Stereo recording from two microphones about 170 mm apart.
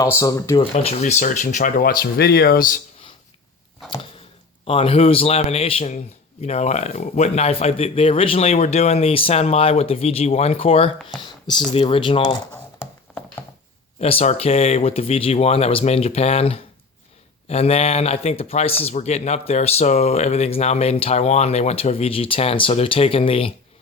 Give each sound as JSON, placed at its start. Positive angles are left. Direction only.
{"t": 0.2, "sound": "speech", "side_deg": 20}
{"t": 0.6, "sound": "speech", "side_deg": 35}
{"t": 4.6, "sound": "speech", "side_deg": 35}
{"t": 11.2, "sound": "computer keyboard", "side_deg": 25}
{"t": 11.7, "sound": "speech", "side_deg": 35}
{"t": 14.0, "sound": "speech", "side_deg": 35}